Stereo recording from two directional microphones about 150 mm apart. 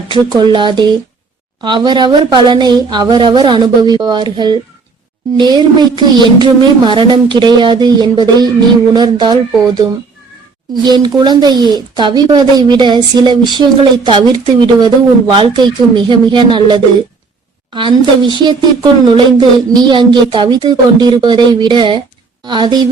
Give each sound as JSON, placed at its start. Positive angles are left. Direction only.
{"t": 0.1, "sound": "a woman's voice", "side_deg": -30}
{"t": 10.8, "sound": "a woman's voice", "side_deg": -30}